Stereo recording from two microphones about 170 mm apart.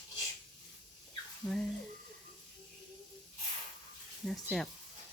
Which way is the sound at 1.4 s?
20° left (ahead or behind).